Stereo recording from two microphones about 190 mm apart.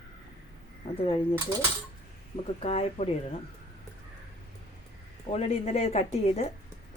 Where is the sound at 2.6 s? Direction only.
30° left (ahead or behind).